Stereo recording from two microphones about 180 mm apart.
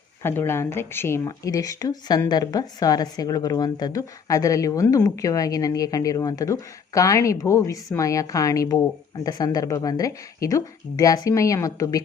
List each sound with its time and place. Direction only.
0.2 s speech: 10° left (ahead or behind)